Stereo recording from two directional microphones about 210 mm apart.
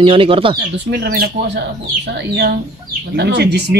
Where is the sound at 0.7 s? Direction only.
50° right (ahead or behind).